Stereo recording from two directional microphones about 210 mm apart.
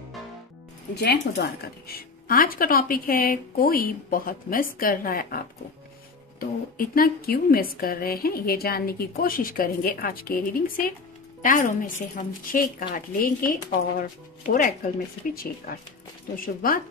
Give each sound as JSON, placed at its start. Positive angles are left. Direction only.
{"t": 0.9, "sound": "a woman's voice", "side_deg": 55}
{"t": 2.0, "sound": "a woman's voice", "side_deg": 40}
{"t": 6.8, "sound": "a woman's voice", "side_deg": 45}